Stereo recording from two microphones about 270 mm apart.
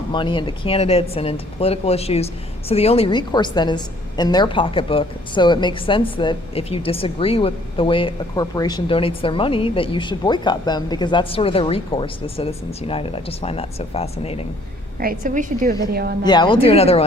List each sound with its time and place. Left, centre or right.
0.1 s speech: centre
14.9 s a woman's voice: right
16.2 s speech: centre